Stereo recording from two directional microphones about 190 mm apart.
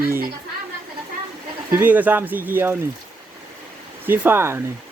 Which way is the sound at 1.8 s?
10° right (ahead or behind).